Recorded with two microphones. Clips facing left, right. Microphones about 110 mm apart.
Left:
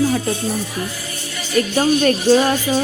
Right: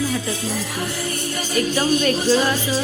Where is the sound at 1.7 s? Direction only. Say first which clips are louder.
Left 4 dB; 45° left (ahead or behind).